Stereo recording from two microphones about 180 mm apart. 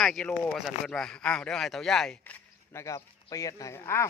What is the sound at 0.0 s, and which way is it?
Speech, 5° left (ahead or behind).